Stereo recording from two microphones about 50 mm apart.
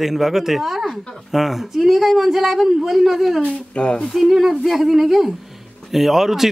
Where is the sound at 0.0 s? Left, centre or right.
Centre.